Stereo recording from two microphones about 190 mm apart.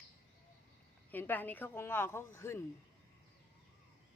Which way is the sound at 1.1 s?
10° left (ahead or behind).